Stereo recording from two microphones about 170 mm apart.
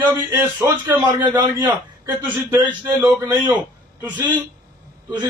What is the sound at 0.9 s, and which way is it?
Speech, 25° right (ahead or behind).